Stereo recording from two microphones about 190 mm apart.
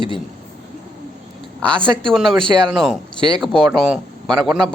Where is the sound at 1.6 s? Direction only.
5° left (ahead or behind).